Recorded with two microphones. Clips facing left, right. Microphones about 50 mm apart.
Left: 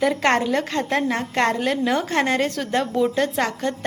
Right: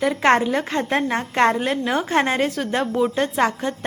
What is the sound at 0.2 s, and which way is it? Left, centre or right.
A woman's voice, centre.